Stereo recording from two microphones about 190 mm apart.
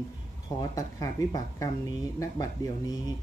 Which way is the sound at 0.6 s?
20° left (ahead or behind).